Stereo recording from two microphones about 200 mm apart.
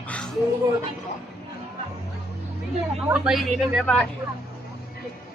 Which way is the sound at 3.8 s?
5° left (ahead or behind).